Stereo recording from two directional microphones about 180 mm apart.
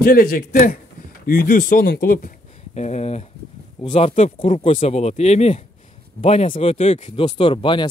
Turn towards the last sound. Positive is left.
turn(degrees=30)  # may be behind; listen again after turning